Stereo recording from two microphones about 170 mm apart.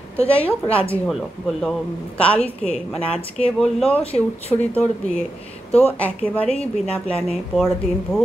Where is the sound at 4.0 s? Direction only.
35° left (ahead or behind).